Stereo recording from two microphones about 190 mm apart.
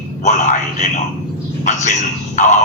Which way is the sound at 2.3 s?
40° left (ahead or behind).